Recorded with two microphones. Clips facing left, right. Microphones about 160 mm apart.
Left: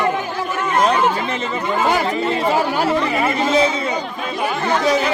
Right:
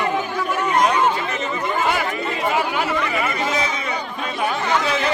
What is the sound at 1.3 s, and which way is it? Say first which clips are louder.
Speech: left 2 dB; 30° left (ahead or behind).